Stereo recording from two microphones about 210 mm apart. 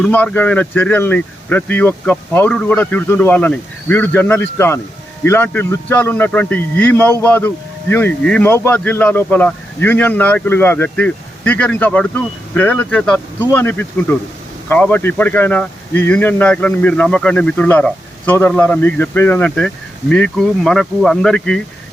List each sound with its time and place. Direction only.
0.0 s a man's voice: 5° left (ahead or behind)